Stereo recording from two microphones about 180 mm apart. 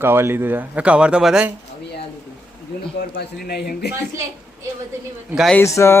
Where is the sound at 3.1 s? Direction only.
65° left (ahead or behind).